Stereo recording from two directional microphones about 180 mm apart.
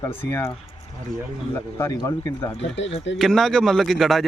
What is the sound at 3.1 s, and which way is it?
Speech, centre (ahead or behind).